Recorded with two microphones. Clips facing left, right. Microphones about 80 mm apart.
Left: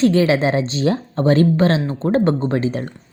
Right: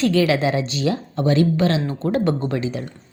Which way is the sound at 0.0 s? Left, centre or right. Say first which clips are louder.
Left 3 dB; left.